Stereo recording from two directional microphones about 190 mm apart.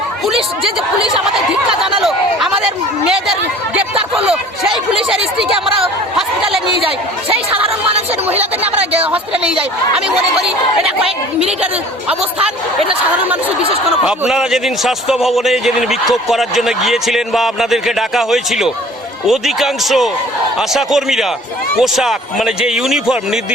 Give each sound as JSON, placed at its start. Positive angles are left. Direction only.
{"t": 1.8, "sound": "a sound", "side_deg": 0}
{"t": 4.3, "sound": "a man's voice", "side_deg": -5}
{"t": 7.3, "sound": "speech", "side_deg": -30}
{"t": 8.3, "sound": "a man's voice", "side_deg": -10}
{"t": 13.2, "sound": "a man's voice", "side_deg": -10}